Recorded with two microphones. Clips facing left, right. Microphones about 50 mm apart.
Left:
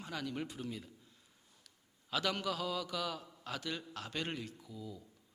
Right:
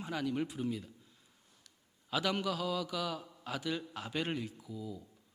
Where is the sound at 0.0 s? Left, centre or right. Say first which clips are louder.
Right 5 dB; centre.